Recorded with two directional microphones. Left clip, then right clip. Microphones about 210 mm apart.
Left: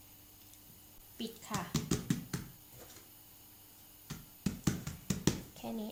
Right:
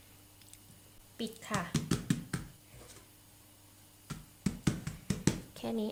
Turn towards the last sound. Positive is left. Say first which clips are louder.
# right 6 dB
turn(degrees=-30)  # may be behind; listen again after turning